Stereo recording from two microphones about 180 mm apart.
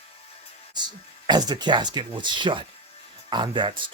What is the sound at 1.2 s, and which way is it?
Speech, 25° right (ahead or behind).